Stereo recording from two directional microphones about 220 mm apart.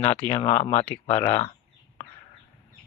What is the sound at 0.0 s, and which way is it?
A man's voice, 25° left (ahead or behind).